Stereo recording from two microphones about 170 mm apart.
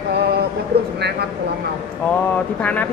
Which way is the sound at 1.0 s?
75° right (ahead or behind).